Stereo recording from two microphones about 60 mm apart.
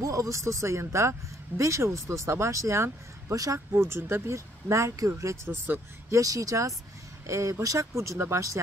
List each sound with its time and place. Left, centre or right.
0.0 s speech: right
3.7 s speech: right
6.0 s speech: right
7.2 s speech: right